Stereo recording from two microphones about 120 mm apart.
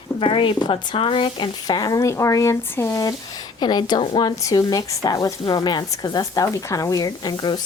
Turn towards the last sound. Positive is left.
turn(degrees=35)  # may be behind; listen again after turning